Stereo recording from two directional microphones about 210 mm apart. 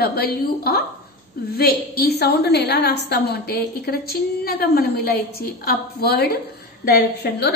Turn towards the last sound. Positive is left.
turn(degrees=50)  # may be behind; listen again after turning